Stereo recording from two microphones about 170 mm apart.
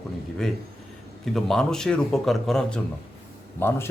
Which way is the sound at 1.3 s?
5° left (ahead or behind).